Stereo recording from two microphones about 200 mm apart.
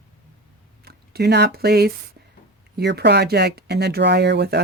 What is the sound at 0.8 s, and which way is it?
Speech, 50° right (ahead or behind).